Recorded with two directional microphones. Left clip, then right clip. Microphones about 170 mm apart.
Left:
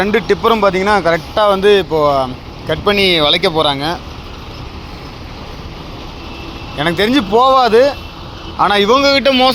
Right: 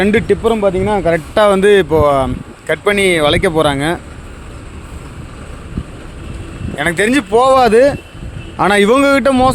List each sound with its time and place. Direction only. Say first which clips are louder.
0.3 s speech: left 1 dB; 35° right (ahead or behind)
1.1 s speech: right 1 dB; 70° right (ahead or behind)
2.9 s speech: left 1 dB; 45° right (ahead or behind)
6.7 s speech: even; 65° right (ahead or behind); by 9.1 s 80° right
9.1 s speech: even; 40° right (ahead or behind)